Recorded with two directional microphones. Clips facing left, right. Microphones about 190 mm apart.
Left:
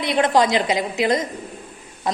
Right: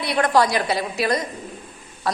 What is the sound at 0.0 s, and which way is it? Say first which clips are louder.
Speech: left 1 dB; 20° left (ahead or behind).